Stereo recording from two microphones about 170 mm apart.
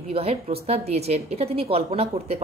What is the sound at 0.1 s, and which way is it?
A woman's voice, 35° right (ahead or behind).